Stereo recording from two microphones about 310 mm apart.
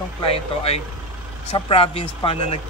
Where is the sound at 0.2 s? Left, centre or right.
Centre.